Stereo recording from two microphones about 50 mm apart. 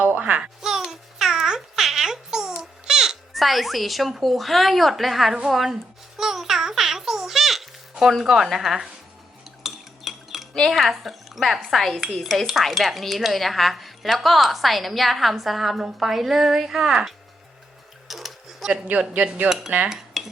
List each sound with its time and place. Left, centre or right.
0.0 s music: right
0.6 s babbling: centre
3.3 s speech: centre
6.1 s music: centre
8.2 s speech: centre
9.6 s cutlery: centre
10.7 s speech: centre
18.1 s a sound: centre
19.1 s cutlery: right
19.5 s cutlery: centre